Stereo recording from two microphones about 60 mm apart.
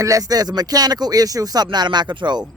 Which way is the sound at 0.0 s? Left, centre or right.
Right.